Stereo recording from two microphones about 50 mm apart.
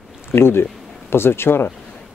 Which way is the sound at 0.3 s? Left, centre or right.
Left.